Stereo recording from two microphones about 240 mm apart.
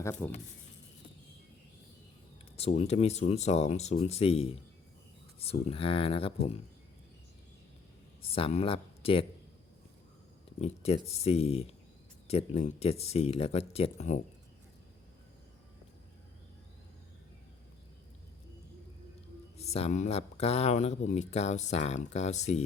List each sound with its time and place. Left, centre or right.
0.0 s speech: centre
2.6 s speech: left
5.6 s speech: left
8.2 s speech: left
10.6 s speech: left
19.7 s speech: left